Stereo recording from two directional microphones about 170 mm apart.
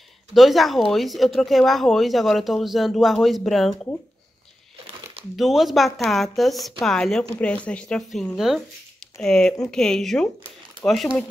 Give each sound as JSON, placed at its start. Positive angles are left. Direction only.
{"t": 0.3, "sound": "speech", "side_deg": 0}
{"t": 5.3, "sound": "speech", "side_deg": 0}